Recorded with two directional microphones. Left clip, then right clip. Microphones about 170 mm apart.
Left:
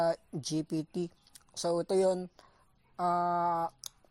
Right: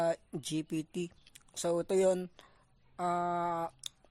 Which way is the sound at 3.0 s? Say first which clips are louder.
Left 3 dB; centre (ahead or behind).